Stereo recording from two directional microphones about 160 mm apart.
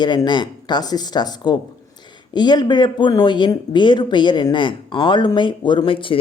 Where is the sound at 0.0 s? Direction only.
25° left (ahead or behind).